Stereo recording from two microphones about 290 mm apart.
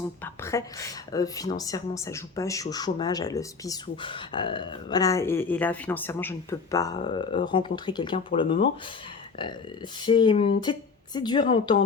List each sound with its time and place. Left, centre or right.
0.4 s a woman's voice: centre
10.1 s a woman's voice: centre